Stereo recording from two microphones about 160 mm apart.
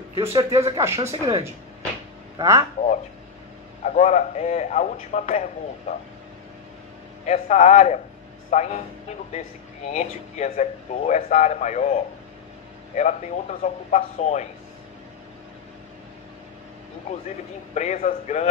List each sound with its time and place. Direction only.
0.2 s speech: 20° right (ahead or behind)
2.3 s speech: 20° right (ahead or behind)
3.8 s a man's voice: 45° left (ahead or behind)
7.2 s a man's voice: 45° left (ahead or behind)
9.8 s a man's voice: 45° left (ahead or behind)
17.7 s a man's voice: 45° left (ahead or behind)